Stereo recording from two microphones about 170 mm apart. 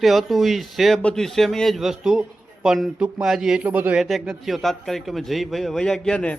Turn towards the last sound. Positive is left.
turn(degrees=5)  # may be behind; listen again after turning